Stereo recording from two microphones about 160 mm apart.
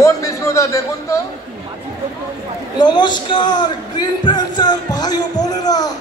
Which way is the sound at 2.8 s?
25° left (ahead or behind).